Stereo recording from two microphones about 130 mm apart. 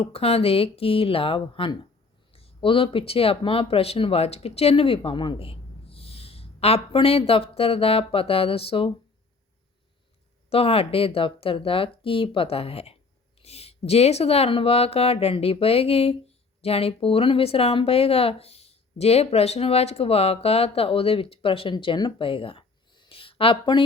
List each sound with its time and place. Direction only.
0.0 s speech: 50° left (ahead or behind)
10.5 s speech: 50° left (ahead or behind)